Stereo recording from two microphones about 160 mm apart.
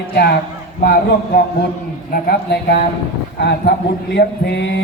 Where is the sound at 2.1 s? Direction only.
80° left.